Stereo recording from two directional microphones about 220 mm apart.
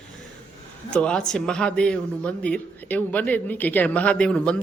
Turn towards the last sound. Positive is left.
turn(degrees=5)  # may be behind; listen again after turning